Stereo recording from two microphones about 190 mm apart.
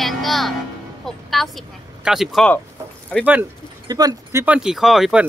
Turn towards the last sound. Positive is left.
turn(degrees=0)  # may be behind; listen again after turning